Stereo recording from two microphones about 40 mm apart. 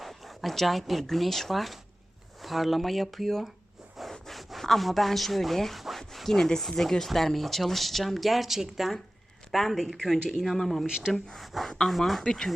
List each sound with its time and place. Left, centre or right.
0.0 s a sound: centre
1.0 s speech: centre
10.8 s speech: centre
11.3 s speech: centre
12.2 s speech: centre